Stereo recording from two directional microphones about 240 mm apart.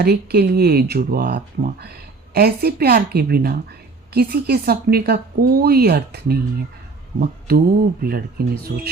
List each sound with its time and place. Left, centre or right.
0.0 s speech: right
7.2 s mantra: right
8.0 s speech: right